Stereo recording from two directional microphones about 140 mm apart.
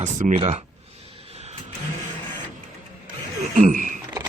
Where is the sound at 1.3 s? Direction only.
50° right (ahead or behind).